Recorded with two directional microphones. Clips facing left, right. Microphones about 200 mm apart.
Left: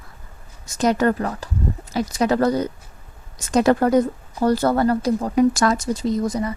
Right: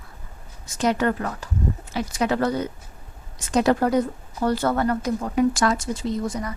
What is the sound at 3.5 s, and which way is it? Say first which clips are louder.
Speech: left 3 dB; 50° left (ahead or behind).